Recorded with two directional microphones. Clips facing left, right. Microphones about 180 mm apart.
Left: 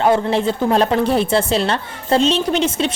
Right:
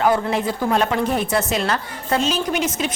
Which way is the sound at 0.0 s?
30° left (ahead or behind).